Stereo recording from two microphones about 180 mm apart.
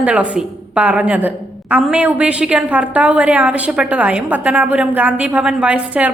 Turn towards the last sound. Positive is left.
turn(degrees=-5)  # may be behind; listen again after turning